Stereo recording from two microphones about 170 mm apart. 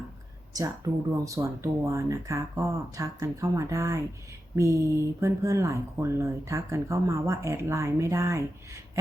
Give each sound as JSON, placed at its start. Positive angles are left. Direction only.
{"t": 1.1, "sound": "speech", "side_deg": -20}